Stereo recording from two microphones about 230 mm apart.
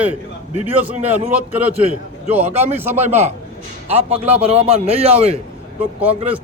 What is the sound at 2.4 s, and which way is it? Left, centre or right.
A man's voice, right.